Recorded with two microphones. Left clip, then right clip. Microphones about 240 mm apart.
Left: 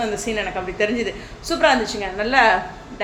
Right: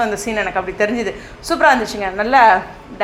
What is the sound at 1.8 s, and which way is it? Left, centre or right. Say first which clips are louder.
Speech: right 4 dB; centre.